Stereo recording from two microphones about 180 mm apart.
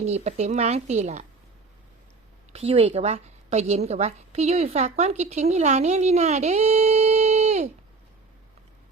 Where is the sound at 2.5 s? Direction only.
35° right (ahead or behind).